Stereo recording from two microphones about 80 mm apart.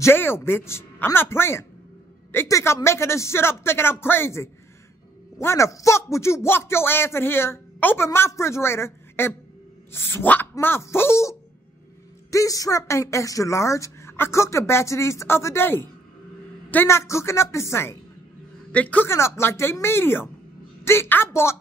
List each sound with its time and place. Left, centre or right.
0.0 s speech: left
18.7 s a man's voice: centre
19.0 s speech: left